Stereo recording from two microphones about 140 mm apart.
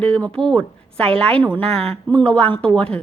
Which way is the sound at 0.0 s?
10° left (ahead or behind).